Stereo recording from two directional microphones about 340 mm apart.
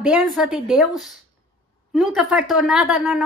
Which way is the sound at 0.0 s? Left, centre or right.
Centre.